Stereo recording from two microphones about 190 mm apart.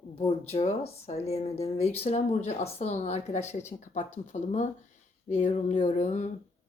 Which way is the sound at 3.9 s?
40° left (ahead or behind).